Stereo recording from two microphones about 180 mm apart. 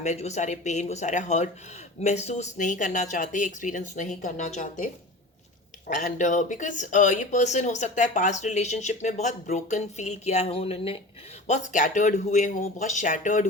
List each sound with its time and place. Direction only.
0.0 s speech: 40° left (ahead or behind)
5.9 s speech: 45° left (ahead or behind)